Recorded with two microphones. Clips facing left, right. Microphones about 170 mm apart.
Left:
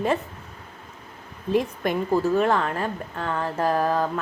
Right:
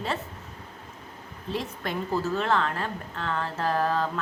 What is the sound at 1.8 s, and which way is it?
Speech, 15° left (ahead or behind).